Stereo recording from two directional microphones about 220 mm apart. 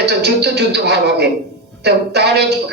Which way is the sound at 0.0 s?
50° right (ahead or behind).